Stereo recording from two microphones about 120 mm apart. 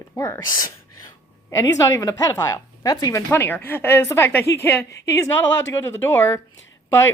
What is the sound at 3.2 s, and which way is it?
Speech, 15° left (ahead or behind).